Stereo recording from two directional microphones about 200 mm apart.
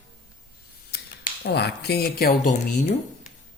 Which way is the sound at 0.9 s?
50° left (ahead or behind).